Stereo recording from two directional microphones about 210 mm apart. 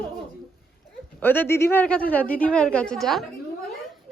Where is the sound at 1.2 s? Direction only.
10° left (ahead or behind).